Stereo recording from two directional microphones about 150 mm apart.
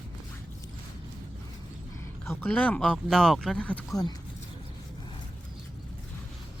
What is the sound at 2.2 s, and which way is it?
Speech, 15° left (ahead or behind).